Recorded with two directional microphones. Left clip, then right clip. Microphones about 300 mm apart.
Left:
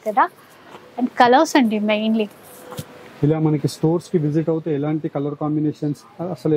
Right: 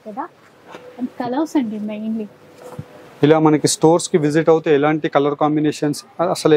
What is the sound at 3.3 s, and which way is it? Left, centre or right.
Speech, centre.